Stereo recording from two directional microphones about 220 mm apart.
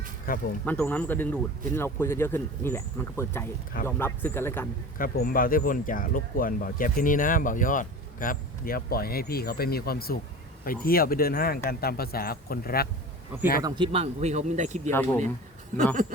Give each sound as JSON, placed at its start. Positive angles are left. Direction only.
{"t": 0.3, "sound": "speech", "side_deg": 40}
{"t": 0.6, "sound": "a man's voice", "side_deg": 5}
{"t": 4.9, "sound": "speech", "side_deg": 40}
{"t": 13.6, "sound": "speech", "side_deg": -20}
{"t": 14.8, "sound": "a man's voice", "side_deg": 10}